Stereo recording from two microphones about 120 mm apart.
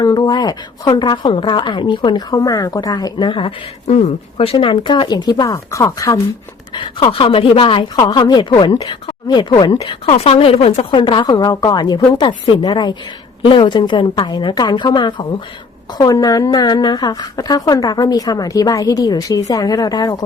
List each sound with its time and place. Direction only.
0.0 s a woman's voice: 35° left (ahead or behind)
6.7 s a woman's voice: 45° left (ahead or behind)
9.8 s a woman's voice: 55° left (ahead or behind)
16.0 s a woman's voice: 30° left (ahead or behind)